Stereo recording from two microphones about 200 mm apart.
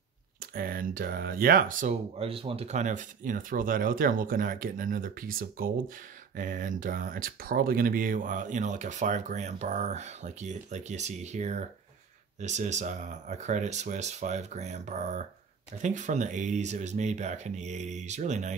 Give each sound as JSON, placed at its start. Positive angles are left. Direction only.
{"t": 0.4, "sound": "speech", "side_deg": -45}